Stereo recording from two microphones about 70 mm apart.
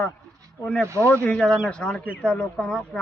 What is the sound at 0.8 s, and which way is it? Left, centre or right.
Speech, right.